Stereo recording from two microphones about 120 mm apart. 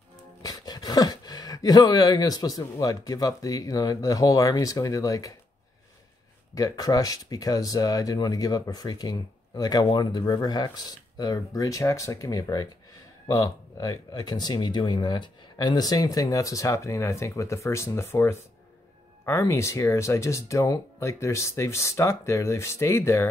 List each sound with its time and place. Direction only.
0.4 s a sound: 30° left (ahead or behind)
2.6 s speech: 30° left (ahead or behind)
6.5 s speech: 30° left (ahead or behind)